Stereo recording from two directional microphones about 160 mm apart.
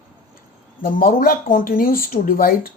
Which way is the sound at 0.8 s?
60° left (ahead or behind).